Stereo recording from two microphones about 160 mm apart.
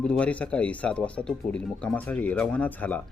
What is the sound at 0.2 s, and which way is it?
Speech, 10° left (ahead or behind).